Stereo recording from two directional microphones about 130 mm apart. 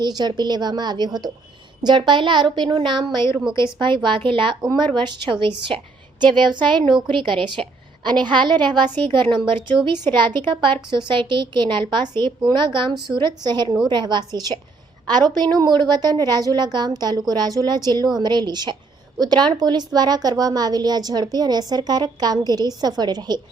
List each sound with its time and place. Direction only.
0.0 s a woman's voice: 30° right (ahead or behind)
4.6 s a woman's voice: 30° right (ahead or behind)
7.6 s a woman's voice: 5° left (ahead or behind)
8.0 s a woman's voice: 35° right (ahead or behind)